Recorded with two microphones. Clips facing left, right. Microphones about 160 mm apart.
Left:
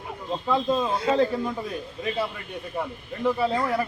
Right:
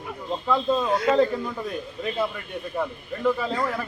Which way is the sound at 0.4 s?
10° left (ahead or behind).